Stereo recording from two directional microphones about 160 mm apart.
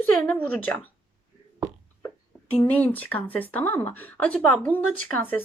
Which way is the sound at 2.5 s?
10° left (ahead or behind).